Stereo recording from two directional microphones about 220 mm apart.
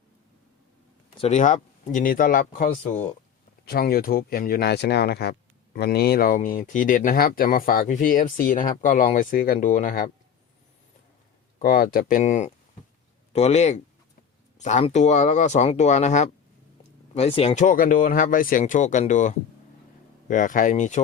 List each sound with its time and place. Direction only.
1.1 s speech: 30° left (ahead or behind)
11.6 s speech: 40° left (ahead or behind)